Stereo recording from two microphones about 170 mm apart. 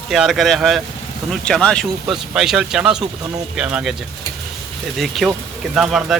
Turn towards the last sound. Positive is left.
turn(degrees=0)  # may be behind; listen again after turning